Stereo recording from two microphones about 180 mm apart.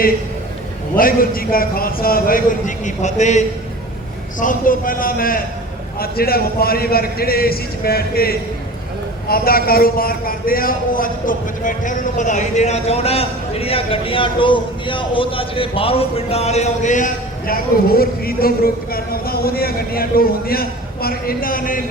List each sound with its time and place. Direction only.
0.9 s a man's voice: 50° left (ahead or behind)